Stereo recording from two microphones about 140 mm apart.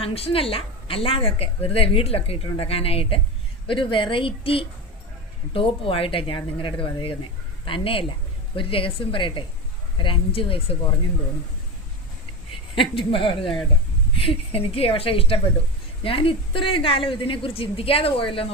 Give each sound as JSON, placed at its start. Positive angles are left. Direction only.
{"t": 0.0, "sound": "a woman's voice", "side_deg": 45}
{"t": 12.7, "sound": "a woman's voice", "side_deg": 40}